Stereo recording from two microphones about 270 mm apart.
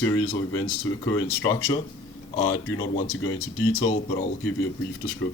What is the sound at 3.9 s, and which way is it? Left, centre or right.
Speech, left.